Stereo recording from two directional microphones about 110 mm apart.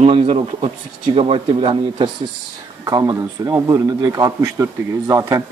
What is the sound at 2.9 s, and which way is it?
A man's voice, 30° right (ahead or behind).